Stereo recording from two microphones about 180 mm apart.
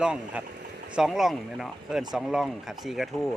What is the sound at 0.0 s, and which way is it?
Speech, 5° right (ahead or behind).